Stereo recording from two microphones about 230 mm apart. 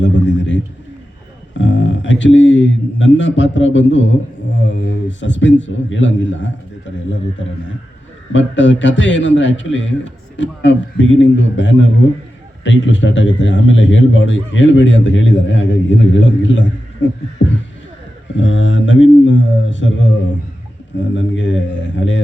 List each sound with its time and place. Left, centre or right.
0.0 s a sound: left
1.5 s a man's voice: left
8.3 s a man's voice: left
18.3 s a man's voice: left
21.2 s a man's voice: left